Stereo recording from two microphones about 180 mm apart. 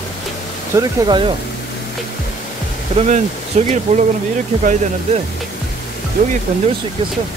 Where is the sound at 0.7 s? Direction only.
25° right (ahead or behind).